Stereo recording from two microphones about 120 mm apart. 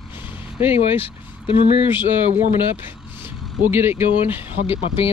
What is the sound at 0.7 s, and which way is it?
Speech, 50° left (ahead or behind).